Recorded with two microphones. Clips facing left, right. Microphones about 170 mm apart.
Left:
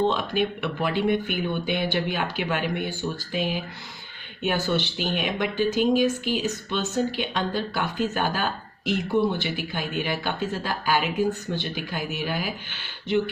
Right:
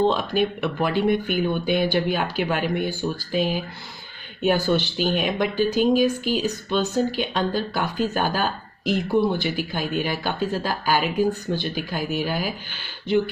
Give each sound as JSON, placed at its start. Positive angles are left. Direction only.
{"t": 0.0, "sound": "speech", "side_deg": -40}